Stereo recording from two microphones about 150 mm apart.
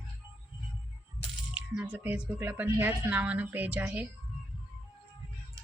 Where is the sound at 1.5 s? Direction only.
10° right (ahead or behind).